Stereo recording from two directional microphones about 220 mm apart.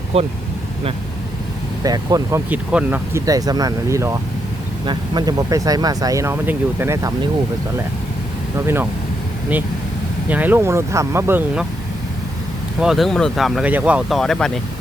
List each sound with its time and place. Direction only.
0.1 s speech: 25° right (ahead or behind)
1.8 s speech: 15° right (ahead or behind)
8.5 s speech: 10° right (ahead or behind)
10.2 s speech: 10° right (ahead or behind)
12.8 s speech: centre (ahead or behind)